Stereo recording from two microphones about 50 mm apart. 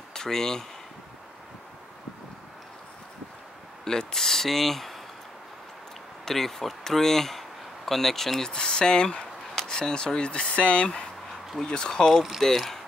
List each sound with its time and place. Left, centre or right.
0.1 s speech: centre
3.8 s speech: centre
6.2 s speech: centre; by 11.0 s left
11.6 s speech: centre
12.4 s speech: centre